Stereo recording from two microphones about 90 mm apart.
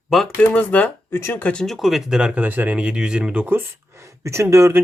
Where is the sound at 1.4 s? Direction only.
10° left (ahead or behind).